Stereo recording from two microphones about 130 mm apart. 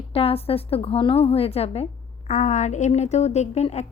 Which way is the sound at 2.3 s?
65° left (ahead or behind).